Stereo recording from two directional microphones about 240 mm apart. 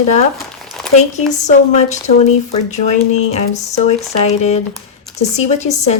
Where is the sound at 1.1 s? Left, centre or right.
Left.